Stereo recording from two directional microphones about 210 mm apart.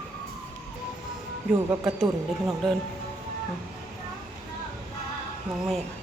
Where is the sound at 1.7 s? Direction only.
5° right (ahead or behind).